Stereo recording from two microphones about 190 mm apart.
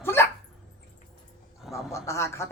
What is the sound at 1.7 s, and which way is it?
Speech, 15° left (ahead or behind).